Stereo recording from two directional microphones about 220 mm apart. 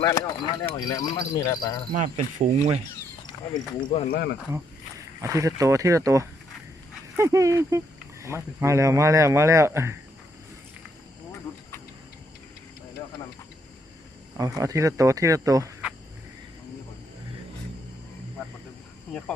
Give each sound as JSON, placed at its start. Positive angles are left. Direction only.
{"t": 0.0, "sound": "speech", "side_deg": 15}
{"t": 1.9, "sound": "speech", "side_deg": -35}
{"t": 3.8, "sound": "speech", "side_deg": 25}
{"t": 4.1, "sound": "speech", "side_deg": 45}
{"t": 5.2, "sound": "speech", "side_deg": -15}
{"t": 14.3, "sound": "speech", "side_deg": -15}